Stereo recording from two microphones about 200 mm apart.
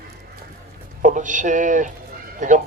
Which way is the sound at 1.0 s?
40° right (ahead or behind).